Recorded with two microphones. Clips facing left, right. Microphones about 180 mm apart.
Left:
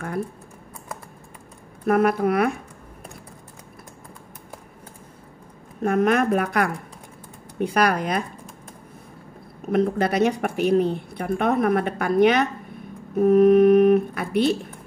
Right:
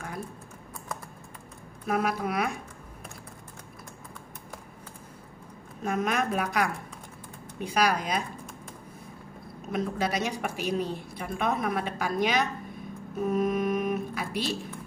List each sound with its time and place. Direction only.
1.9 s a woman's voice: 55° left (ahead or behind)
5.8 s a woman's voice: 55° left (ahead or behind)
9.7 s a woman's voice: 55° left (ahead or behind)